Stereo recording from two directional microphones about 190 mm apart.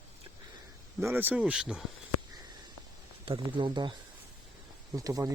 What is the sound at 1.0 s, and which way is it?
Speech, 10° right (ahead or behind).